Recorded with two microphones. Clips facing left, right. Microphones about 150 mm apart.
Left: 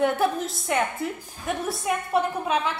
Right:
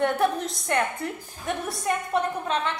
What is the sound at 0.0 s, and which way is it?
A woman's voice, 5° left (ahead or behind).